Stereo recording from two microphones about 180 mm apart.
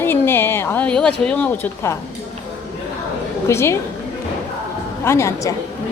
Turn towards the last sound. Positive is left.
turn(degrees=15)  # may be behind; listen again after turning